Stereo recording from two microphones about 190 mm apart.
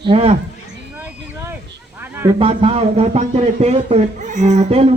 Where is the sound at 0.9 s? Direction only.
10° right (ahead or behind).